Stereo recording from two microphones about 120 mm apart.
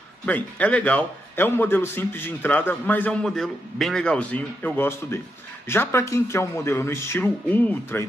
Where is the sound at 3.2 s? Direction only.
5° left (ahead or behind).